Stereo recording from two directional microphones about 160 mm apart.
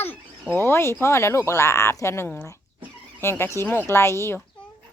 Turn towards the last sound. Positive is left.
turn(degrees=15)  # may be behind; listen again after turning